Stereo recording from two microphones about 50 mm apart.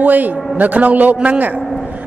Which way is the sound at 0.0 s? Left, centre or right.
Right.